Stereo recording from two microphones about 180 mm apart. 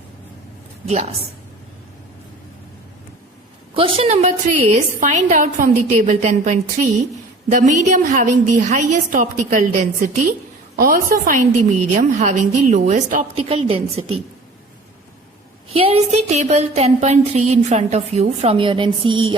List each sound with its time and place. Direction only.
0.9 s speech: 35° right (ahead or behind)
3.8 s a woman's voice: 30° right (ahead or behind)
15.7 s speech: 35° right (ahead or behind)